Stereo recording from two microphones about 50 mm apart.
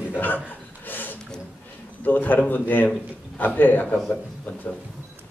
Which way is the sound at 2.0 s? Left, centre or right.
Left.